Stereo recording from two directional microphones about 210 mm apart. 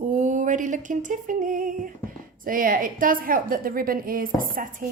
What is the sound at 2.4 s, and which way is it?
A woman's voice, 40° right (ahead or behind).